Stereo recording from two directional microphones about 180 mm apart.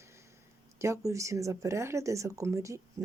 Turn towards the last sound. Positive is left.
turn(degrees=-15)  # may be behind; listen again after turning